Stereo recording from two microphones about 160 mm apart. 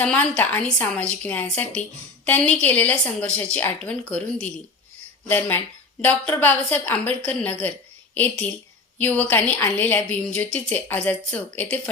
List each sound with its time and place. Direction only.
0.0 s a woman's voice: 10° left (ahead or behind)